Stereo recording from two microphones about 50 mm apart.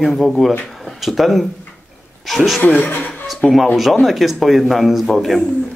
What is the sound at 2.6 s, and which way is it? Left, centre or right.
Speech, left.